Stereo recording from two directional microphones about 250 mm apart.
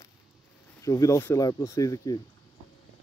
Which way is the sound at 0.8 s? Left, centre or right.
Centre.